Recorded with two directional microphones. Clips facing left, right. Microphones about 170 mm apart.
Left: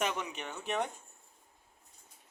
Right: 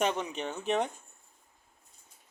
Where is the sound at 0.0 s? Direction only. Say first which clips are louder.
Right 5 dB; 30° right (ahead or behind).